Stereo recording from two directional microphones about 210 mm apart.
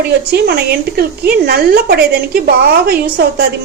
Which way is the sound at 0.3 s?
50° right (ahead or behind).